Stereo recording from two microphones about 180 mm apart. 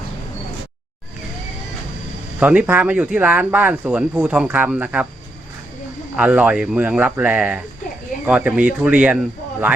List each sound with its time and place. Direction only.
2.4 s speech: 10° right (ahead or behind)
6.1 s speech: 10° right (ahead or behind)